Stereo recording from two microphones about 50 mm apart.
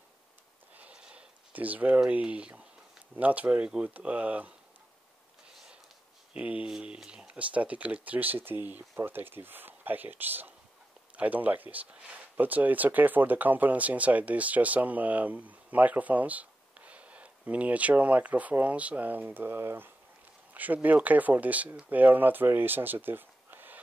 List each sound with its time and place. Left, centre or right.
0.7 s a sound: right
1.5 s speech: right
6.3 s speech: right
20.5 s speech: right